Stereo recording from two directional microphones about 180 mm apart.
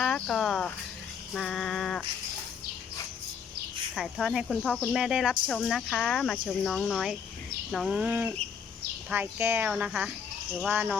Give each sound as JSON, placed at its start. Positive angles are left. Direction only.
{"t": 0.0, "sound": "speech", "side_deg": 5}
{"t": 1.3, "sound": "a sound", "side_deg": 5}
{"t": 3.9, "sound": "speech", "side_deg": 0}